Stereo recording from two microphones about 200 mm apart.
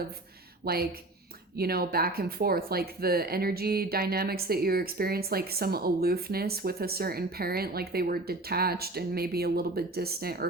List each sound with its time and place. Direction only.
0.6 s speech: 50° right (ahead or behind)